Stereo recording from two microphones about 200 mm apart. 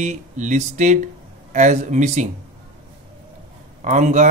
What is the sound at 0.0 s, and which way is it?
Speech, 40° right (ahead or behind).